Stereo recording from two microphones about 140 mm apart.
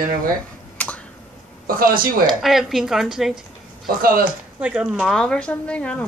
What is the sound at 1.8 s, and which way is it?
Speech, 90° right.